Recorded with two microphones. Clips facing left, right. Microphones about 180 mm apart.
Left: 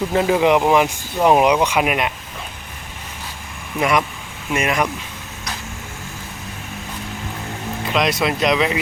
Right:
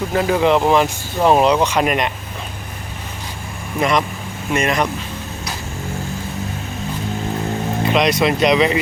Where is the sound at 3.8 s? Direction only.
10° left (ahead or behind).